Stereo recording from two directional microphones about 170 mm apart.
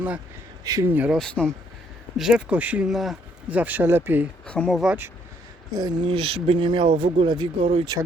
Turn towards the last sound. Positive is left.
turn(degrees=-30)  # may be behind; listen again after turning